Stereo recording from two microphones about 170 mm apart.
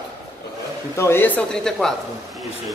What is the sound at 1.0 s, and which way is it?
Speech, 15° left (ahead or behind).